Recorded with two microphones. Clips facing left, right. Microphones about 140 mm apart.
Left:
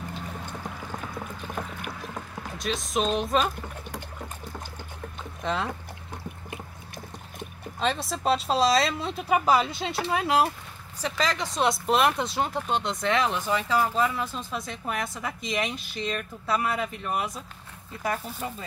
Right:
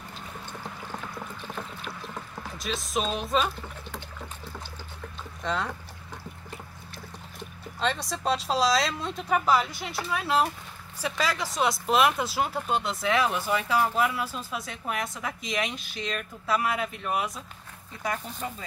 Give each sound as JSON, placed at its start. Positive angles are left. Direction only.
{"t": 1.5, "sound": "boat", "side_deg": 50}
{"t": 2.6, "sound": "speech", "side_deg": 0}
{"t": 5.4, "sound": "speech", "side_deg": 5}
{"t": 8.1, "sound": "speech", "side_deg": 0}
{"t": 9.7, "sound": "speech", "side_deg": 25}
{"t": 11.0, "sound": "speech", "side_deg": -10}